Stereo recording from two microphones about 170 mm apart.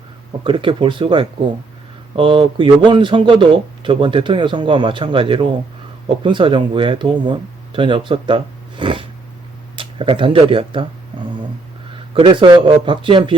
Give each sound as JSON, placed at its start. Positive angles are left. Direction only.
{"t": 0.4, "sound": "a man's voice", "side_deg": -30}
{"t": 12.1, "sound": "a man's voice", "side_deg": -30}